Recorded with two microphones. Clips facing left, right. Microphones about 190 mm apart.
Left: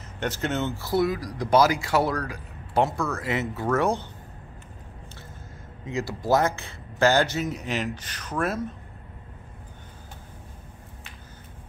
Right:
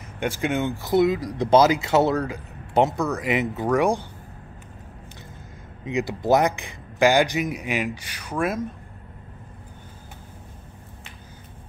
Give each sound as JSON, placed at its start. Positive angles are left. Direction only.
{"t": 0.2, "sound": "speech", "side_deg": -10}
{"t": 5.9, "sound": "a man's voice", "side_deg": -20}